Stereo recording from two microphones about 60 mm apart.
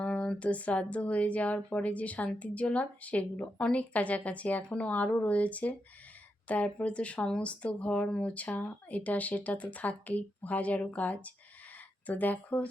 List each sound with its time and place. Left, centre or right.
0.0 s speech: left